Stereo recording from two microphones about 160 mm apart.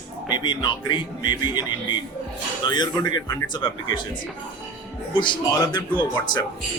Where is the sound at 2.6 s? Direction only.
25° left (ahead or behind).